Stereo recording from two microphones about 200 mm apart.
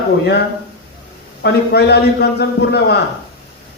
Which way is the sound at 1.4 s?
55° left (ahead or behind).